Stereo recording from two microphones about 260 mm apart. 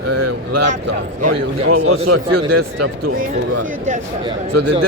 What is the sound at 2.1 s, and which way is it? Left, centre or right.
Speech, right.